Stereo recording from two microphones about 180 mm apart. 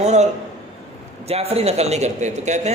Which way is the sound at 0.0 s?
40° right (ahead or behind).